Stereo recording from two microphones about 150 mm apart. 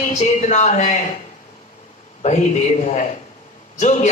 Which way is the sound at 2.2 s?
55° left (ahead or behind).